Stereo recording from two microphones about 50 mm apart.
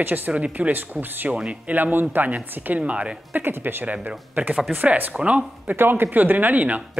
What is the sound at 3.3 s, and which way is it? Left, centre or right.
Speech, right.